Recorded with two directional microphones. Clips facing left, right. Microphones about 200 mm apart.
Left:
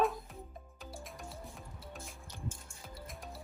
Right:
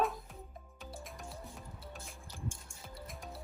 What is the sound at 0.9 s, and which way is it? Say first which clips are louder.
Music: even; centre (ahead or behind).